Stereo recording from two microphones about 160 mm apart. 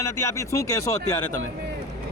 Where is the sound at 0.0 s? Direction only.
20° left (ahead or behind).